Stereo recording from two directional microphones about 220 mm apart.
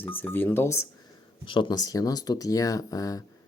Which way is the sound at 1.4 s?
20° left (ahead or behind).